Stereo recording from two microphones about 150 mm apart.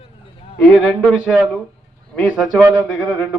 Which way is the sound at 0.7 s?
5° right (ahead or behind).